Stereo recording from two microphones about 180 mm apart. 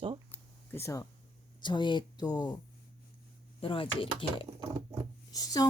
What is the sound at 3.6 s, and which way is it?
Speech, 30° left (ahead or behind).